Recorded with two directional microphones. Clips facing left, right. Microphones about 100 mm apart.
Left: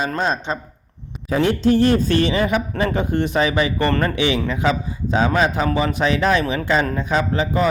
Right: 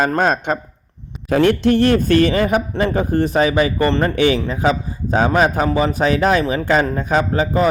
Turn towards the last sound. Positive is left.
turn(degrees=-35)  # may be behind; listen again after turning